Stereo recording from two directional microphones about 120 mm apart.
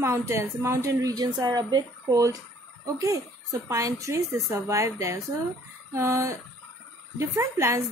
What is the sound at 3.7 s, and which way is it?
A woman's voice, 25° right (ahead or behind).